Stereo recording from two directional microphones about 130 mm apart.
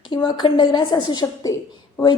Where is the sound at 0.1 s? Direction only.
35° left (ahead or behind).